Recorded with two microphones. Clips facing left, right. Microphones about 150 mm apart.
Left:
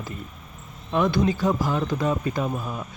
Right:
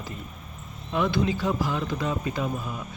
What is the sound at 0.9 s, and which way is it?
Speech, 45° left (ahead or behind).